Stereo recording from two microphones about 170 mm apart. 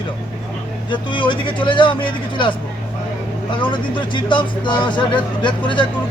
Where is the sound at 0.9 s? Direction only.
30° left (ahead or behind).